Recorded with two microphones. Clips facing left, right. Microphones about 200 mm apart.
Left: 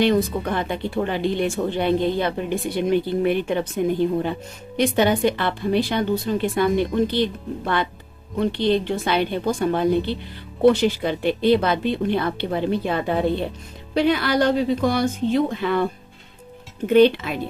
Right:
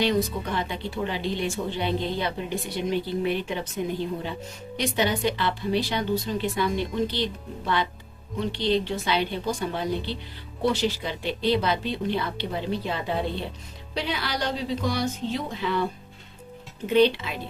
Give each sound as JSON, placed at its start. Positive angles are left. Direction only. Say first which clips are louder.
{"t": 0.0, "sound": "speech", "louder": "left 5 dB", "side_deg": 55}
{"t": 4.8, "sound": "speech", "louder": "left 7 dB", "side_deg": 55}